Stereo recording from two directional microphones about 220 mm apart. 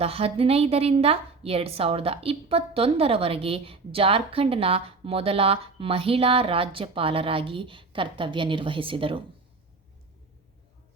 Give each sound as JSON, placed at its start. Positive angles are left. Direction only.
{"t": 0.0, "sound": "a woman's voice", "side_deg": -25}